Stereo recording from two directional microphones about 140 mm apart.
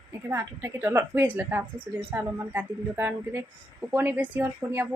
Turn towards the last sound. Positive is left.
turn(degrees=-15)  # may be behind; listen again after turning